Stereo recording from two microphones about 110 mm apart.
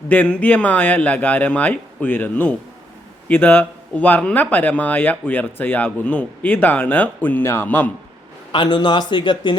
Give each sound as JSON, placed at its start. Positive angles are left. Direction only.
{"t": 0.1, "sound": "a man's voice", "side_deg": 15}
{"t": 8.5, "sound": "speech", "side_deg": 45}